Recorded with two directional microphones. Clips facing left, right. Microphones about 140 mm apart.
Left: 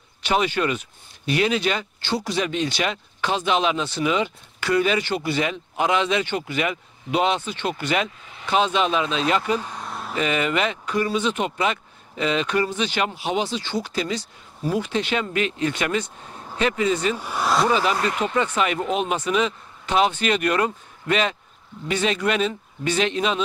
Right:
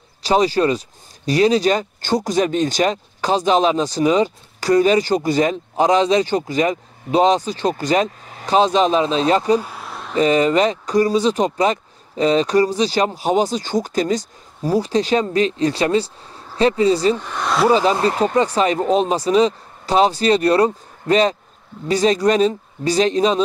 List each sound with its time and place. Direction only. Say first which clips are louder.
0.2 s speech: right 6 dB; 35° right (ahead or behind)
9.6 s a sound: right 2 dB; 5° right (ahead or behind)
10.1 s speech: right 8 dB; 35° right (ahead or behind)
17.2 s speech: right 2 dB; 5° left (ahead or behind)
17.6 s speech: right 6 dB; 35° right (ahead or behind)